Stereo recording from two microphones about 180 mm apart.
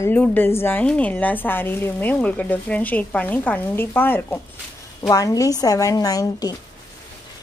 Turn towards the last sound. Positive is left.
turn(degrees=20)  # may be behind; listen again after turning